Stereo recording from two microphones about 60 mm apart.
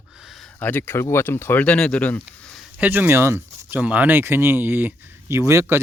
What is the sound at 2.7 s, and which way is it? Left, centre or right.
Speech, right.